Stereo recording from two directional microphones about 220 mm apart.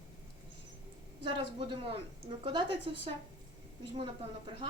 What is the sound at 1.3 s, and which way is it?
A woman's voice, 25° right (ahead or behind).